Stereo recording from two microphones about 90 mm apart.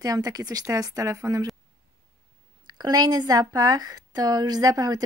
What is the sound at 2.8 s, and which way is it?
Speech, 45° right (ahead or behind).